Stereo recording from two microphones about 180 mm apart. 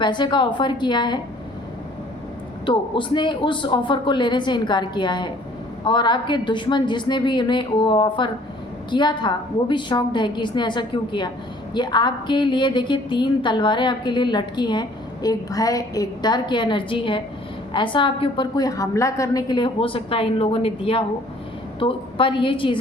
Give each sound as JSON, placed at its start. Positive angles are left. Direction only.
{"t": 0.0, "sound": "a woman's voice", "side_deg": 25}
{"t": 2.6, "sound": "a woman's voice", "side_deg": 25}